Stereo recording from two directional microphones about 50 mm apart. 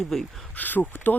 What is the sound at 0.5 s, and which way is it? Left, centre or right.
Speech, left.